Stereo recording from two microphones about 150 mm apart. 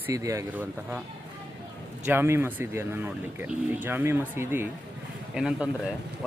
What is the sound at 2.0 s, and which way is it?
Speech, 15° right (ahead or behind).